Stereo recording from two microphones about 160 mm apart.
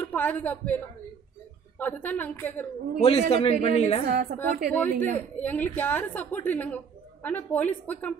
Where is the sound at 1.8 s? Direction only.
10° left (ahead or behind).